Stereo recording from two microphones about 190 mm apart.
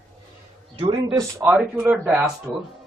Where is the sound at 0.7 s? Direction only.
25° right (ahead or behind).